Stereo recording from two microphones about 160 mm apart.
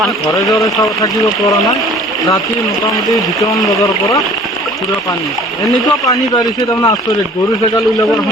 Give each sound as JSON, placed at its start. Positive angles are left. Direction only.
{"t": 0.8, "sound": "speech", "side_deg": 20}
{"t": 3.1, "sound": "speech", "side_deg": 0}
{"t": 6.1, "sound": "speech", "side_deg": 20}